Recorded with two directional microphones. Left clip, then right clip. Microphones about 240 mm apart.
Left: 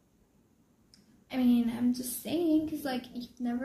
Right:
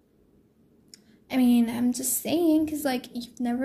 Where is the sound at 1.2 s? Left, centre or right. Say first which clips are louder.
Right 5 dB; right.